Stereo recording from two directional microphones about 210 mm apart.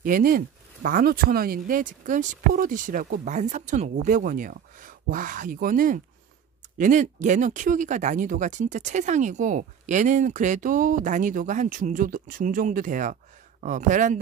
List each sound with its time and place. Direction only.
0.0 s speech: 40° right (ahead or behind)